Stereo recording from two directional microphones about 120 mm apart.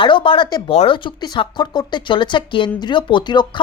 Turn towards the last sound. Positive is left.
turn(degrees=40)  # may be behind; listen again after turning